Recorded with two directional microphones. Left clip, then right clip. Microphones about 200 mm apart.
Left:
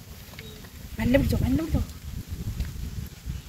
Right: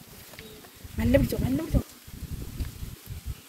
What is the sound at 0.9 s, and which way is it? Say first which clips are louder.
Speech: even; 55° right (ahead or behind).